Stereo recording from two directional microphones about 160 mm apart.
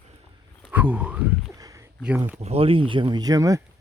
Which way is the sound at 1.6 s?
20° right (ahead or behind).